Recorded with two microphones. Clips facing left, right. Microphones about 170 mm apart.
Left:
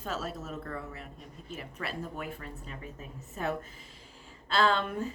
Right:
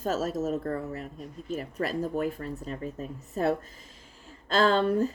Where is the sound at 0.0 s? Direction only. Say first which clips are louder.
Right 9 dB; 40° right (ahead or behind).